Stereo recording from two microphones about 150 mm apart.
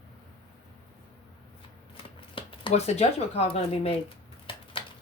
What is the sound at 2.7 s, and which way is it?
Speech, 45° left (ahead or behind).